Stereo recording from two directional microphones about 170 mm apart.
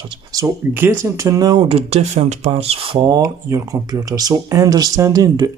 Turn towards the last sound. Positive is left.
turn(degrees=-20)  # may be behind; listen again after turning